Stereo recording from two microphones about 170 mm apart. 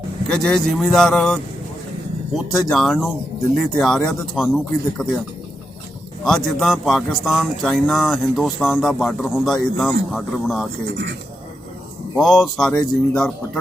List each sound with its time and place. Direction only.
0.3 s speech: 5° left (ahead or behind)
2.5 s speech: centre (ahead or behind)
6.2 s speech: centre (ahead or behind)
10.8 s speech: 90° right
12.1 s speech: centre (ahead or behind)